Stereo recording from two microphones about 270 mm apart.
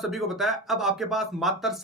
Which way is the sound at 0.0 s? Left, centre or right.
Centre.